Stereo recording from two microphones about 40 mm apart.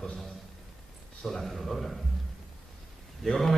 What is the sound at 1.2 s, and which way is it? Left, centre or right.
Speech, centre.